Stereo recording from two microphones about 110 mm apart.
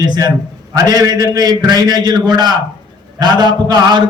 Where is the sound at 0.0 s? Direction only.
40° right (ahead or behind).